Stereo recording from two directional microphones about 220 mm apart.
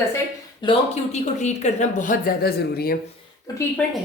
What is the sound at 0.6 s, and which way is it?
Speech, 20° left (ahead or behind).